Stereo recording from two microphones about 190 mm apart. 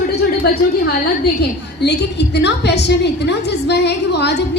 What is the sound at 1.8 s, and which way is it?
A woman's voice, 60° left (ahead or behind).